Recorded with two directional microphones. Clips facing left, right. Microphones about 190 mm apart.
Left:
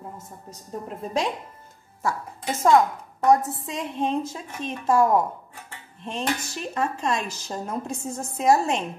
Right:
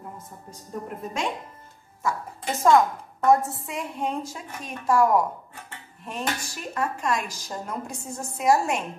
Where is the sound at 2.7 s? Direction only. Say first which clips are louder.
Left 1 dB; 20° left (ahead or behind).